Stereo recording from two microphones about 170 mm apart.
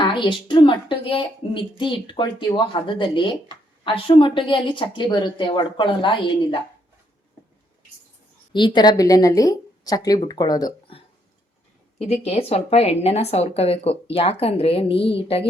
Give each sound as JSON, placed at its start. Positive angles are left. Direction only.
{"t": 0.0, "sound": "a woman's voice", "side_deg": 30}
{"t": 8.5, "sound": "a woman's voice", "side_deg": 25}